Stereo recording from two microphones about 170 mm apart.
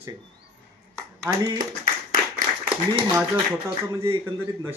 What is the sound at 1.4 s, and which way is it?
Speech, 25° right (ahead or behind).